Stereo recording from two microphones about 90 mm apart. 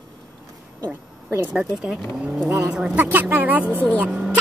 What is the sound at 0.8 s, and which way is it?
Speech, 25° right (ahead or behind).